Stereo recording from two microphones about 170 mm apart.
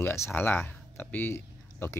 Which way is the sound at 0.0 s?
15° left (ahead or behind).